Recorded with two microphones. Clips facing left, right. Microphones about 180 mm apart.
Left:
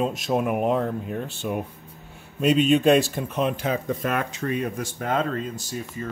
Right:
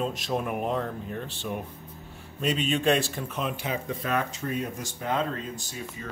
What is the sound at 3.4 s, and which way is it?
Speech, 45° left (ahead or behind).